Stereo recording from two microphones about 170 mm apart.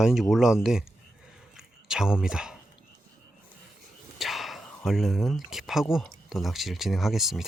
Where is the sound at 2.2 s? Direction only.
5° right (ahead or behind).